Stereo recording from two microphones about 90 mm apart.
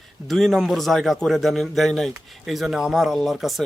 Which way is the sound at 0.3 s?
5° left (ahead or behind).